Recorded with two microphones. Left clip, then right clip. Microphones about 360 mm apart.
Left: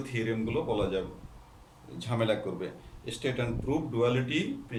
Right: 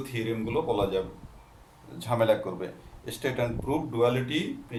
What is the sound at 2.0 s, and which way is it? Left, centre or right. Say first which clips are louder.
Speech: right 5 dB; centre.